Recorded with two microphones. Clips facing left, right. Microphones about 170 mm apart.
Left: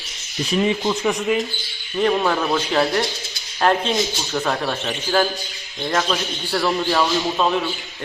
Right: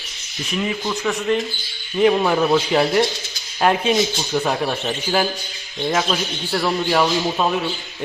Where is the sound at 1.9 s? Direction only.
10° right (ahead or behind).